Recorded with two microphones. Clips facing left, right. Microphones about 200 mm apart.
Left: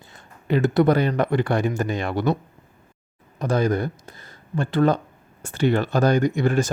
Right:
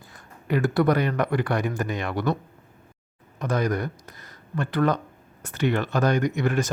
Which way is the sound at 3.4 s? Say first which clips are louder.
Left 4 dB; 30° left (ahead or behind).